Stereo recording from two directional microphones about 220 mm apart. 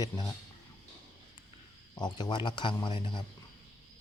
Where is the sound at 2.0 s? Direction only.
20° left (ahead or behind).